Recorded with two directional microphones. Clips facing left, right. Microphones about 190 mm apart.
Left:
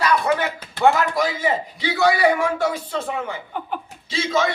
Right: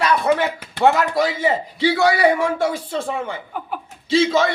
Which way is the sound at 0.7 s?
25° right (ahead or behind).